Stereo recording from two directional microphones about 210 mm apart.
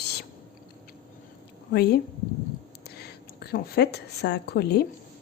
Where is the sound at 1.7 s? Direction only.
50° left (ahead or behind).